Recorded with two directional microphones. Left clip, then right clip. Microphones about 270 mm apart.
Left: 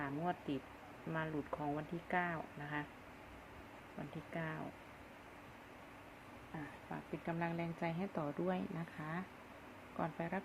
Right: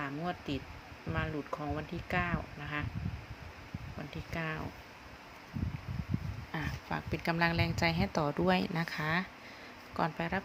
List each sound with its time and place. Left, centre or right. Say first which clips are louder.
0.0 s a sound: right 3 dB; centre
1.1 s speech: right 5 dB; centre
4.4 s speech: right 7 dB; centre
6.9 s speech: right 9 dB; right
10.0 s speech: right 8 dB; right